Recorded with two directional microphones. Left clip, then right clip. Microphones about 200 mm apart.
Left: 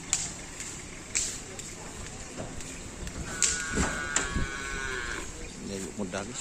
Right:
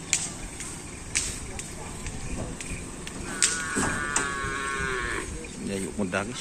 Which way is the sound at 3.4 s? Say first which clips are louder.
Right 3 dB; 50° left (ahead or behind).